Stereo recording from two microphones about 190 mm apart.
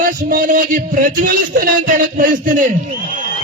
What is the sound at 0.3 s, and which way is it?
Music, 45° right (ahead or behind).